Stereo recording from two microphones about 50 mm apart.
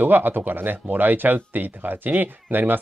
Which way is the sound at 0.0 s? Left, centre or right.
Right.